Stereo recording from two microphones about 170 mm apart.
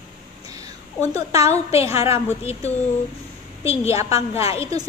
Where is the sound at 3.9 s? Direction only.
20° right (ahead or behind).